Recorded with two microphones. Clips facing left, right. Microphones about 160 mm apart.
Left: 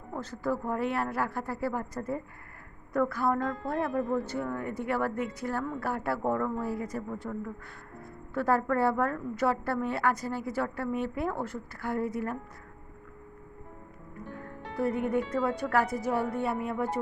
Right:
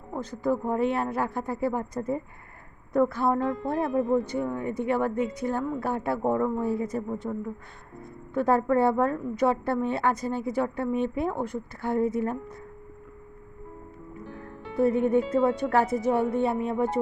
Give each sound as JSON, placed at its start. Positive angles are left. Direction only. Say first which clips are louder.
{"t": 0.1, "sound": "speech", "louder": "right 4 dB", "side_deg": -15}
{"t": 14.8, "sound": "speech", "louder": "right 6 dB", "side_deg": -25}